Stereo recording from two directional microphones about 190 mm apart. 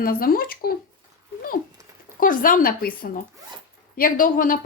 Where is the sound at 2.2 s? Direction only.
45° left (ahead or behind).